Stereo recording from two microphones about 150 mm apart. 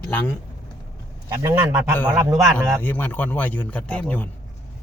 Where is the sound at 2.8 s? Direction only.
15° left (ahead or behind).